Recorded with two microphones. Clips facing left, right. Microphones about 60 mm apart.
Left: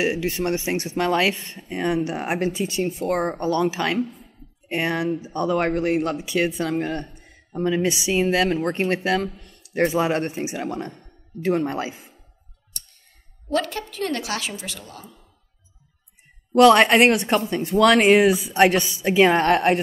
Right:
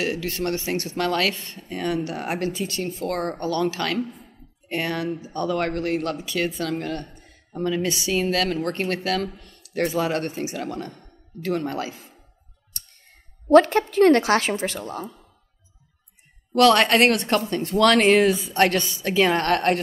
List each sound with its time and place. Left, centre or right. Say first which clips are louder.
0.0 s speech: left 3 dB; centre
13.5 s a woman's voice: right 10 dB; right
16.5 s speech: left 3 dB; centre